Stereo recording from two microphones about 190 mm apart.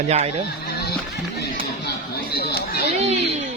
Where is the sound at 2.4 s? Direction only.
55° left (ahead or behind).